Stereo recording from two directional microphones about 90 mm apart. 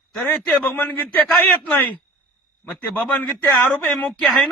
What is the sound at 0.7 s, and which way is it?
A man's voice, 20° left (ahead or behind).